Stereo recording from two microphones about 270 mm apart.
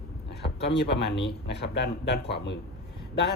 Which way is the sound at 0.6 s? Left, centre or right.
Left.